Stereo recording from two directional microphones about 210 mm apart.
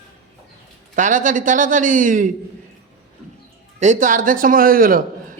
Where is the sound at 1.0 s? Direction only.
35° right (ahead or behind).